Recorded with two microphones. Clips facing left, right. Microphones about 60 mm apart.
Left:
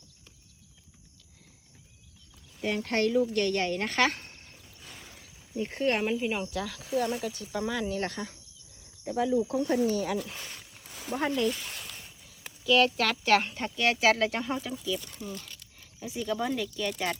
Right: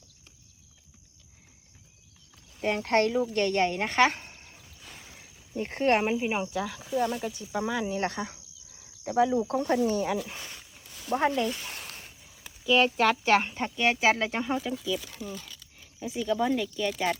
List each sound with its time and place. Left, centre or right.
2.6 s speech: right
4.2 s a sound: centre
5.5 s speech: right
6.1 s speech: right
6.8 s speech: centre
7.3 s speech: centre
9.0 s speech: right
10.2 s speech: centre
10.6 s a sound: centre
11.2 s speech: centre
11.7 s a sound: right
12.6 s speech: centre
15.2 s speech: centre